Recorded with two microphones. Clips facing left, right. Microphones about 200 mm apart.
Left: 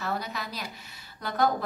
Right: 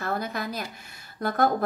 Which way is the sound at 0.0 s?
50° right (ahead or behind).